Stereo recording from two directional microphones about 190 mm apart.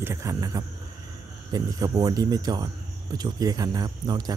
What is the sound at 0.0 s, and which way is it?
A man's voice, 15° right (ahead or behind).